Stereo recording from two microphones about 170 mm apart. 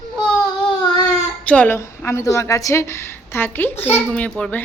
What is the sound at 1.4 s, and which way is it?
A woman's voice, 10° left (ahead or behind).